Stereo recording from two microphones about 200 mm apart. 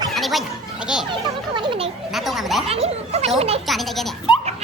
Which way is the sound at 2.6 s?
30° right (ahead or behind).